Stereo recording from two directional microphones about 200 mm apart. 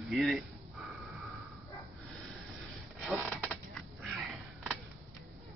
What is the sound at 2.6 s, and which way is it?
Rub, 5° right (ahead or behind).